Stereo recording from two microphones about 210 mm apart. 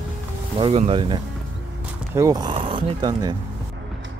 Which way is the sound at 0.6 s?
25° right (ahead or behind).